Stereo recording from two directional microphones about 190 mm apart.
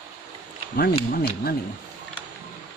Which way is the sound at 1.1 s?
50° left (ahead or behind).